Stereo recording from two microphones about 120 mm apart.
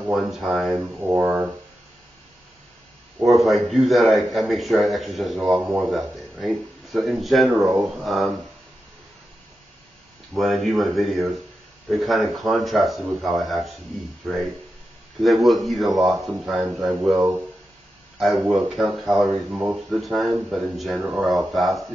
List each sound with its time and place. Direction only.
0.0 s a man's voice: 5° right (ahead or behind)
0.7 s a sound: 15° right (ahead or behind)
3.3 s a man's voice: centre (ahead or behind)
7.5 s speech: 30° right (ahead or behind)
7.9 s a man's voice: centre (ahead or behind)
10.3 s a man's voice: centre (ahead or behind)
21.0 s a sound: 5° right (ahead or behind)
21.5 s a man's voice: centre (ahead or behind)